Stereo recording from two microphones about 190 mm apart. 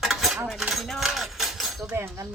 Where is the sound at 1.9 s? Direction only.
15° right (ahead or behind).